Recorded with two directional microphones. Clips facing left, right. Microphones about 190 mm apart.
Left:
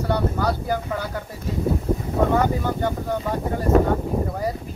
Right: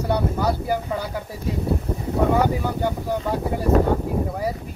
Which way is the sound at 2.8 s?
10° right (ahead or behind).